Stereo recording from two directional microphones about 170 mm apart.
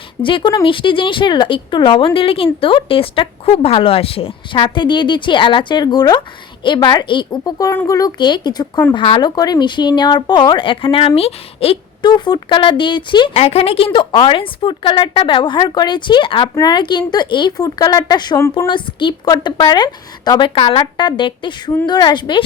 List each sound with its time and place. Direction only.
0.2 s speech: 30° left (ahead or behind)